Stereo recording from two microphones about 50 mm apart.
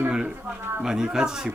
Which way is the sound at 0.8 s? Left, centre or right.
Centre.